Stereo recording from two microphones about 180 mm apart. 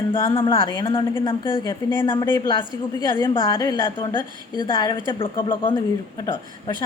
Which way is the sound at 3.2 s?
25° left (ahead or behind).